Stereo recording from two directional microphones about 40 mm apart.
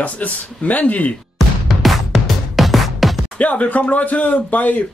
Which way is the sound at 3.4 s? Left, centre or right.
Left.